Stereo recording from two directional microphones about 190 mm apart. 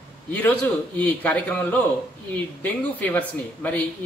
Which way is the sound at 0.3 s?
10° left (ahead or behind).